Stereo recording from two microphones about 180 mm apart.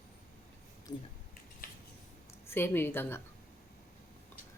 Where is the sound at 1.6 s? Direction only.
50° left (ahead or behind).